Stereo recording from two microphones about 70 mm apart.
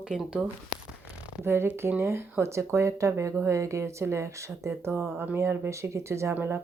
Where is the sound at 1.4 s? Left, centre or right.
Right.